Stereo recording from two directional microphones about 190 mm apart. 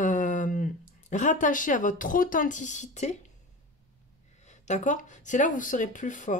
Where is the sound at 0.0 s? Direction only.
40° left (ahead or behind).